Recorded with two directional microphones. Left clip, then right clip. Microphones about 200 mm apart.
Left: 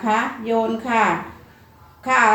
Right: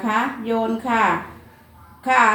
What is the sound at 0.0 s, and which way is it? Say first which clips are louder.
Speech: left 1 dB; 15° left (ahead or behind).